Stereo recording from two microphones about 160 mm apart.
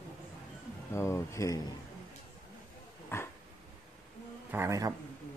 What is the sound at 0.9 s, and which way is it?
Speech, 15° left (ahead or behind).